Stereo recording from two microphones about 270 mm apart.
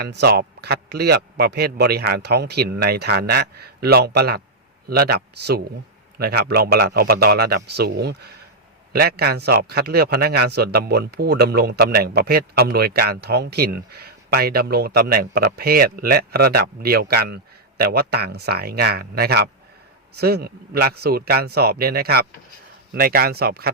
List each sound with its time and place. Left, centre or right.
0.0 s a man's voice: right